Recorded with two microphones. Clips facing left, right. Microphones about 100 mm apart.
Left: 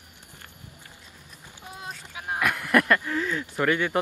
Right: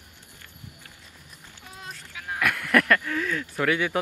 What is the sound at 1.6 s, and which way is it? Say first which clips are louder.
Vehicle: left 3 dB; 20° left (ahead or behind).